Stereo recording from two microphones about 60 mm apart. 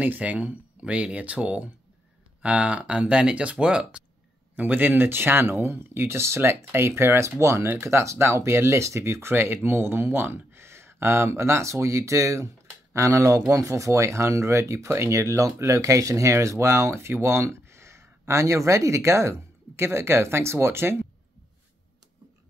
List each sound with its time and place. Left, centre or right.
0.0 s speech: right
4.6 s speech: right